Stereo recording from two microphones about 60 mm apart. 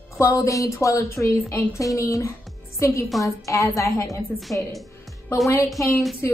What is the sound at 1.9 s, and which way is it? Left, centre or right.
A woman's voice, left.